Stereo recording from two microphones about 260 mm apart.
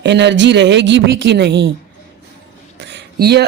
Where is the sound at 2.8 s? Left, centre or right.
Right.